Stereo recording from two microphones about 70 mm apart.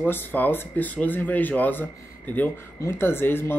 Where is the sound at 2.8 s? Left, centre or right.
Left.